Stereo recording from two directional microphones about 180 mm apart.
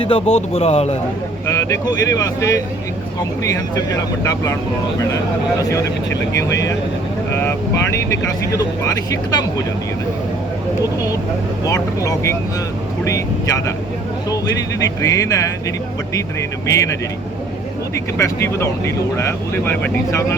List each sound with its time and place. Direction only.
0.0 s speech: 30° left (ahead or behind)
1.5 s speech: 20° left (ahead or behind)
6.3 s speech: 15° left (ahead or behind)
8.5 s speech: 20° left (ahead or behind)
11.6 s speech: 20° left (ahead or behind)
16.6 s speech: 15° left (ahead or behind)
17.9 s speech: 15° left (ahead or behind)